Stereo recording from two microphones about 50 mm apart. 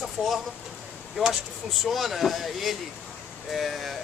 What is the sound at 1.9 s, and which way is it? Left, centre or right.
Speech, centre.